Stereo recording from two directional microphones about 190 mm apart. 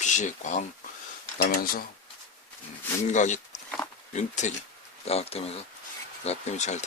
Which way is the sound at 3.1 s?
40° left (ahead or behind).